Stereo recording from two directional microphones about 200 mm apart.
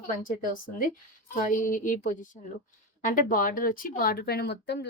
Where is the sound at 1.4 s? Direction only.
40° left (ahead or behind).